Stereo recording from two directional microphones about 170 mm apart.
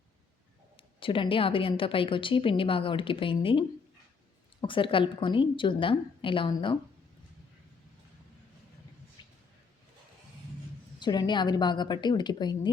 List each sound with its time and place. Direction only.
0.9 s a woman's voice: 30° left (ahead or behind)
9.2 s a sound: 25° left (ahead or behind)
11.0 s a woman's voice: 25° left (ahead or behind)